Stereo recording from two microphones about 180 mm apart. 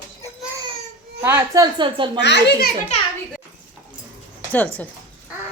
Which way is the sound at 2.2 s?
70° left (ahead or behind).